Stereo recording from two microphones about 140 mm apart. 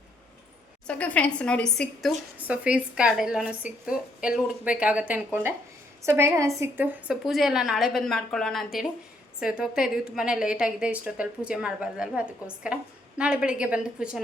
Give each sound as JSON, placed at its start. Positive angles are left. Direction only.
{"t": 0.9, "sound": "a woman's voice", "side_deg": 10}
{"t": 2.5, "sound": "a woman's voice", "side_deg": -10}
{"t": 7.1, "sound": "a woman's voice", "side_deg": 0}